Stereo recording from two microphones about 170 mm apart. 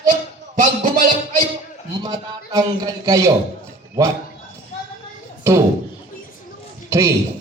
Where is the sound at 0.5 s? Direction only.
50° right (ahead or behind).